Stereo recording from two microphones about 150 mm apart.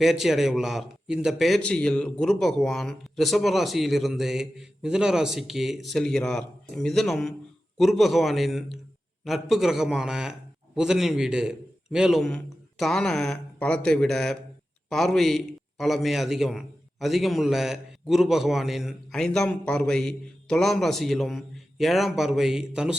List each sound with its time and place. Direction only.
0.0 s a man's voice: centre (ahead or behind)